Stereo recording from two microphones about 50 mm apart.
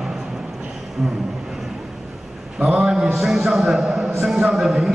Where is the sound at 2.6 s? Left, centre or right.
Centre.